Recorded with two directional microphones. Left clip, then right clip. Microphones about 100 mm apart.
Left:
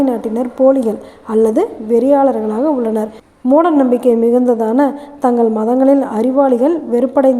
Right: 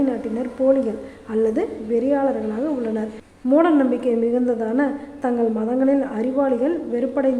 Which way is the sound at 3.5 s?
50° left (ahead or behind).